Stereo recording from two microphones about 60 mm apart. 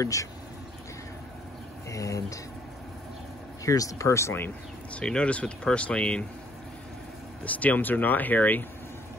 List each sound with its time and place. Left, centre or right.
0.0 s speech: left
1.9 s speech: left
3.6 s speech: left
4.9 s speech: centre
7.4 s speech: left